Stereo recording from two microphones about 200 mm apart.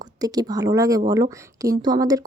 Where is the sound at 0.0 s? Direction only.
20° right (ahead or behind).